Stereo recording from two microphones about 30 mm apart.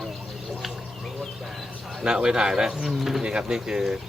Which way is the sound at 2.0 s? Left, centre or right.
Right.